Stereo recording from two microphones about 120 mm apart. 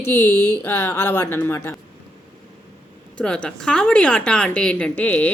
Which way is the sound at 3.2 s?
10° left (ahead or behind).